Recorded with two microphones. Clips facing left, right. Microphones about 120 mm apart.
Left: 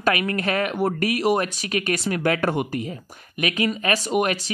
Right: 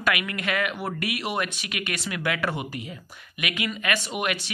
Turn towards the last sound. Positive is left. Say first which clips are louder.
# left 7 dB
turn(degrees=40)  # may be behind; listen again after turning